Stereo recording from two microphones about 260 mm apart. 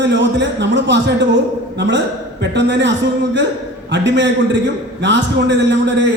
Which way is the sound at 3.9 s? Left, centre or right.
Right.